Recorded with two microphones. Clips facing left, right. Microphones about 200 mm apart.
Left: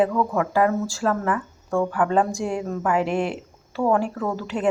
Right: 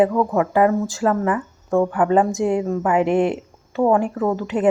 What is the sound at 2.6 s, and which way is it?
Speech, 15° right (ahead or behind).